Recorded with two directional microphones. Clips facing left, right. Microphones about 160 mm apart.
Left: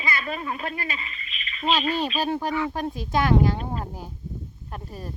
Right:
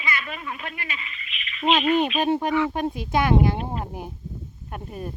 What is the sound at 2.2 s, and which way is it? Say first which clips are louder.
Speech: right 4 dB; 20° right (ahead or behind).